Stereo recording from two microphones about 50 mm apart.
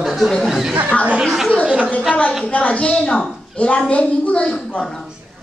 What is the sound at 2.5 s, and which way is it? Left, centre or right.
Speech, left.